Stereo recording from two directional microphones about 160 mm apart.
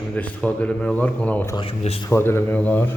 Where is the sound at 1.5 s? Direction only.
35° left (ahead or behind).